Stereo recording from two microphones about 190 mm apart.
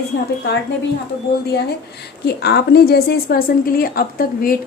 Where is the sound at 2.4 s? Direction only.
55° left (ahead or behind).